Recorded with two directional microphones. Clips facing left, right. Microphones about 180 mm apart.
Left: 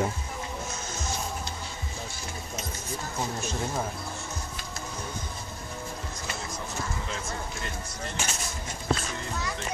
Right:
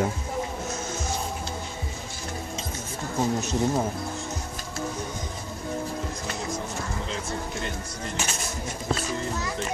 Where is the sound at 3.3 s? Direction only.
20° right (ahead or behind).